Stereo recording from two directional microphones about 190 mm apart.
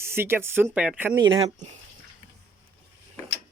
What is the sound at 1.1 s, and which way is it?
Speech, 25° right (ahead or behind).